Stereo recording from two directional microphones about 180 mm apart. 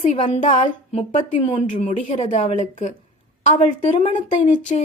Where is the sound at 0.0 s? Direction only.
40° left (ahead or behind).